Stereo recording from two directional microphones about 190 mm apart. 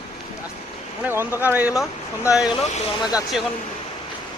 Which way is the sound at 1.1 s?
10° right (ahead or behind).